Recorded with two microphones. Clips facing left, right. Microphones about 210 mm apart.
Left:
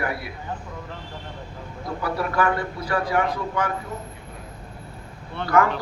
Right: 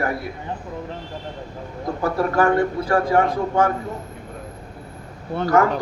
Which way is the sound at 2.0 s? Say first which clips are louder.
Right 5 dB; 45° right (ahead or behind).